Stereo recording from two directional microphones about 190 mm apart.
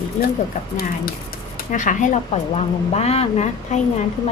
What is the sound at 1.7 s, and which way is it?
Speech, 40° left (ahead or behind).